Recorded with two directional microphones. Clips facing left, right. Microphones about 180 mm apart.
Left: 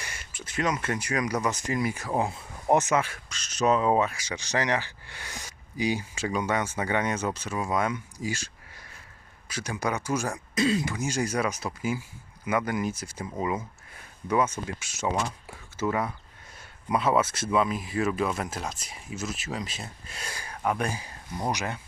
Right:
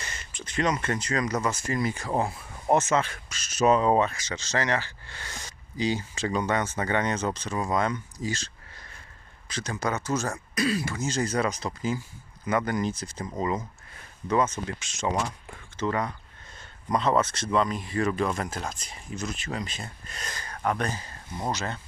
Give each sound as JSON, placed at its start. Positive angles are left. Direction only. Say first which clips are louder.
{"t": 0.0, "sound": "speech", "louder": "right 1 dB", "side_deg": 10}
{"t": 2.2, "sound": "speech", "louder": "even", "side_deg": 20}
{"t": 3.2, "sound": "speech", "louder": "right 2 dB", "side_deg": -5}
{"t": 3.8, "sound": "speech", "louder": "right 1 dB", "side_deg": 5}